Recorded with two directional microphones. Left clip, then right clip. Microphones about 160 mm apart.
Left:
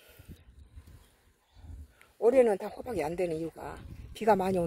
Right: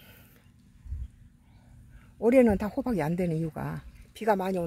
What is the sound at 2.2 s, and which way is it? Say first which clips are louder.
Speech: right 1 dB; 5° right (ahead or behind).